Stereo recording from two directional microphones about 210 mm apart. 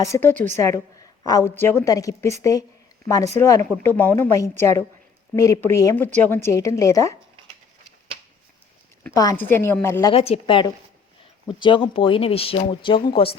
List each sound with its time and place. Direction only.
0.0 s a woman's voice: 10° left (ahead or behind)
9.0 s a woman's voice: 15° left (ahead or behind)
10.1 s speech: 30° left (ahead or behind)